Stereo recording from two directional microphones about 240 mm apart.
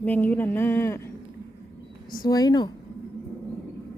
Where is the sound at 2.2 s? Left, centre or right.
Centre.